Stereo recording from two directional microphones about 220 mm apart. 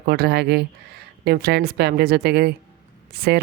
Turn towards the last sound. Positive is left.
turn(degrees=-45)  # may be behind; listen again after turning